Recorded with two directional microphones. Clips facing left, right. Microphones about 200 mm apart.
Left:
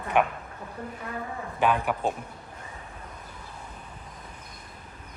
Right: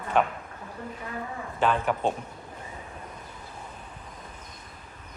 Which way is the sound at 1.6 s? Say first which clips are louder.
Even; 15° left (ahead or behind).